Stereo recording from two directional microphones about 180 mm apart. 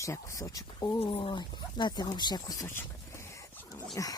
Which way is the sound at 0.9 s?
30° left (ahead or behind).